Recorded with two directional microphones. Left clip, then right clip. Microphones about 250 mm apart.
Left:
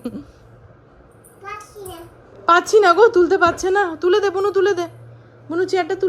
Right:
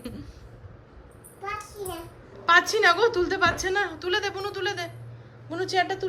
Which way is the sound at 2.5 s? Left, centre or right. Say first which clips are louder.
Left 6 dB; centre.